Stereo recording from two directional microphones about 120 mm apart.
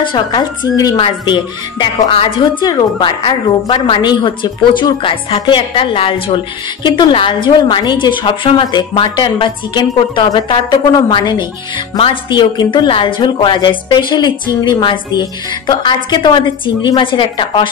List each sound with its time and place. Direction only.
0.0 s a woman's voice: 40° left (ahead or behind)
0.9 s a woman's voice: 45° left (ahead or behind)